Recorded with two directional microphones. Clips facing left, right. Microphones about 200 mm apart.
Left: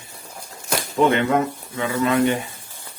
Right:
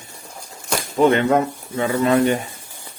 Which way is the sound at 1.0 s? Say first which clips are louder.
Right 3 dB; 35° right (ahead or behind).